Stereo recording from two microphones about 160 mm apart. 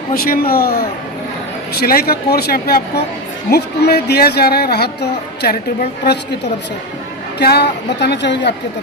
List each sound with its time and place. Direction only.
0.1 s speech: 65° left (ahead or behind)
3.5 s speech: 85° left
7.3 s a woman's voice: 90° left